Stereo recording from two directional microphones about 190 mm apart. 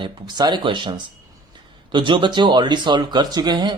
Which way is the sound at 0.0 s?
25° right (ahead or behind).